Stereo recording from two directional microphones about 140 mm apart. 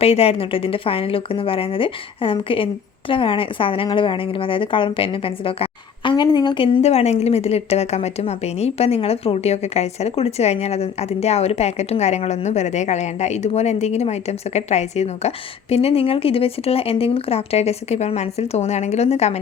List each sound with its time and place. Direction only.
0.0 s a woman's voice: 45° left (ahead or behind)